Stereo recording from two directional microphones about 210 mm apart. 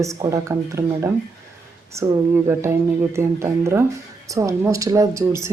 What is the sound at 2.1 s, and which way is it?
Speech, 15° right (ahead or behind).